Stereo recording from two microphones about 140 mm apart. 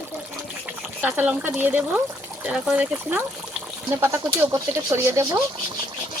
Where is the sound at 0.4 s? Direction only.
10° right (ahead or behind).